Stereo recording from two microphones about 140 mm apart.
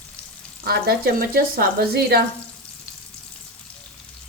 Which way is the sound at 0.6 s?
90° right.